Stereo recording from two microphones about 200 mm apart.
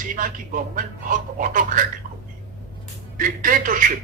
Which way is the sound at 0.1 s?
40° right (ahead or behind).